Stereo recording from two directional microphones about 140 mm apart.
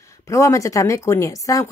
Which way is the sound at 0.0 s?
20° left (ahead or behind).